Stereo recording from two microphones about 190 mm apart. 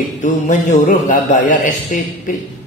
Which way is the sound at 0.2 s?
40° left (ahead or behind).